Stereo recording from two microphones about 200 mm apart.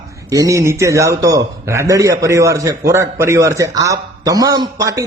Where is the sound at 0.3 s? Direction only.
15° right (ahead or behind).